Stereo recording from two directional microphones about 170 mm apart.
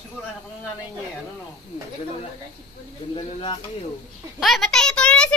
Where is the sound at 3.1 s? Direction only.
30° left (ahead or behind).